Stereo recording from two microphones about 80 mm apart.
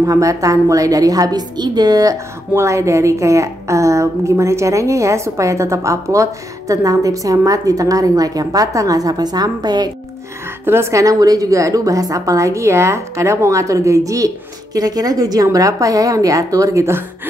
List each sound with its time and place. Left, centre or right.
0.0 s a woman's voice: right
2.5 s a woman's voice: right
10.6 s a woman's voice: right